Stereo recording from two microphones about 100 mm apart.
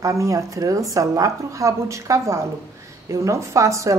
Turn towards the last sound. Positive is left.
turn(degrees=-30)  # may be behind; listen again after turning